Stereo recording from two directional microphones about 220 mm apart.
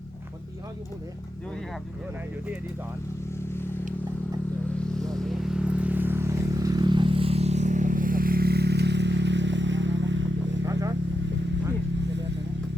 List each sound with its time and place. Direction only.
3.5 s vehicle: 10° left (ahead or behind)
4.9 s vehicle: centre (ahead or behind); by 10.6 s 55° right (ahead or behind)
10.7 s vehicle: 15° right (ahead or behind)